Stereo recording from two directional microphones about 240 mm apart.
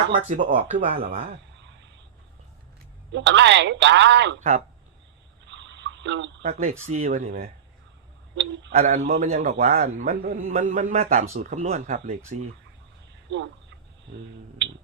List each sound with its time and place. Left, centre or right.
0.3 s speech: right
3.1 s speech: right
5.5 s water: right
6.4 s a man's voice: right
8.7 s a man's voice: right
13.3 s speech: right